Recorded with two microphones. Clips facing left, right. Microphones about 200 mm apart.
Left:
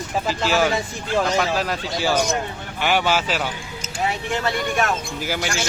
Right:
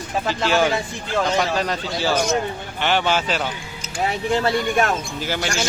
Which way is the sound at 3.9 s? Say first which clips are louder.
Right 3 dB; 35° right (ahead or behind).